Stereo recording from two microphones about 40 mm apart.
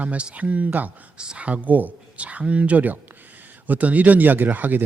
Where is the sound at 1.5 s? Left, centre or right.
Right.